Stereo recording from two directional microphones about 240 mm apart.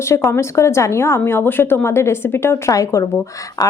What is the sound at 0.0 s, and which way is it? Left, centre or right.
Speech, centre.